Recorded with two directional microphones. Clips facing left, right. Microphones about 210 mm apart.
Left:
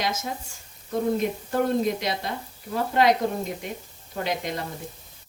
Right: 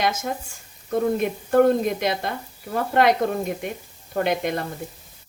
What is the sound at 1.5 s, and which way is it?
A woman's voice, 55° right (ahead or behind).